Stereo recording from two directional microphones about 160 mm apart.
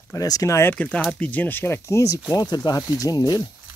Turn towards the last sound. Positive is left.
turn(degrees=20)  # may be behind; listen again after turning